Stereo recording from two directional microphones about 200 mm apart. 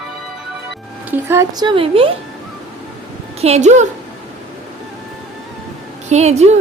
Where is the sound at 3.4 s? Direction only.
30° right (ahead or behind).